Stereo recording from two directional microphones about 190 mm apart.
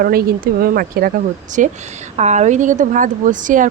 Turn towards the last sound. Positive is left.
turn(degrees=-45)  # may be behind; listen again after turning